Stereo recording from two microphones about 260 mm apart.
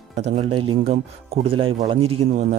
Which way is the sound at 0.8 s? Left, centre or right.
Right.